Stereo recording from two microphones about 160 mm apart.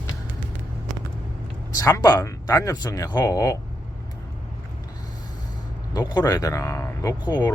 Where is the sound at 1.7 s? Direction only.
20° left (ahead or behind).